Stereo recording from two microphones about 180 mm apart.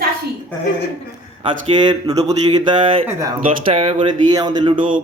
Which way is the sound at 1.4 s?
30° right (ahead or behind).